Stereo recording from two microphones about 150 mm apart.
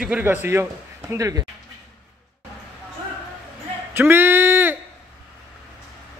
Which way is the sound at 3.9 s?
15° right (ahead or behind).